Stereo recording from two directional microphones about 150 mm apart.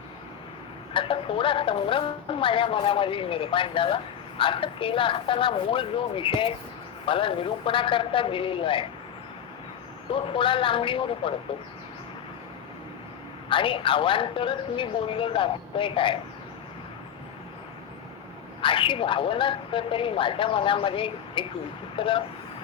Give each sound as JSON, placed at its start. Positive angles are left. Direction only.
{"t": 0.9, "sound": "speech", "side_deg": 35}
{"t": 10.3, "sound": "speech", "side_deg": 35}
{"t": 13.5, "sound": "speech", "side_deg": 35}
{"t": 18.6, "sound": "speech", "side_deg": 35}